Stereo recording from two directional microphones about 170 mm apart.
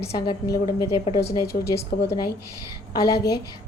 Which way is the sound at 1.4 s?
70° left (ahead or behind).